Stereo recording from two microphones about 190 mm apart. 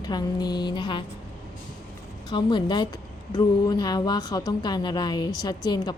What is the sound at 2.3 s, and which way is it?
A woman's voice, 25° left (ahead or behind).